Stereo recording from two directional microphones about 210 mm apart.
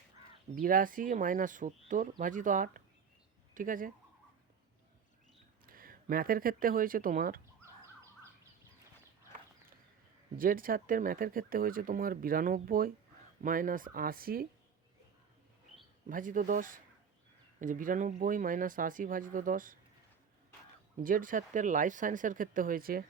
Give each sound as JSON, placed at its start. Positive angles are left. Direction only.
{"t": 0.5, "sound": "speech", "side_deg": -40}
{"t": 5.6, "sound": "speech", "side_deg": -45}
{"t": 10.3, "sound": "speech", "side_deg": -40}
{"t": 16.0, "sound": "speech", "side_deg": -40}
{"t": 21.0, "sound": "speech", "side_deg": -40}